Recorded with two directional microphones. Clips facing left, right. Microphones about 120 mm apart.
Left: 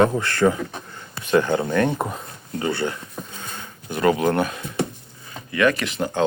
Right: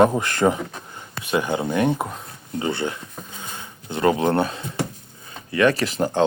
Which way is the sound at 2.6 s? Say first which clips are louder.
Left 1 dB; 20° right (ahead or behind).